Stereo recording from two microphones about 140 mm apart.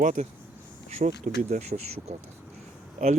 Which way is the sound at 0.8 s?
55° right (ahead or behind).